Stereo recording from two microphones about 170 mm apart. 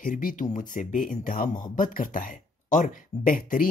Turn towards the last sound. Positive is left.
turn(degrees=55)  # may be behind; listen again after turning